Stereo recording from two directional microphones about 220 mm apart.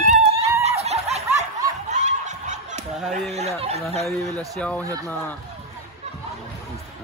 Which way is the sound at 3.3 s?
30° right (ahead or behind).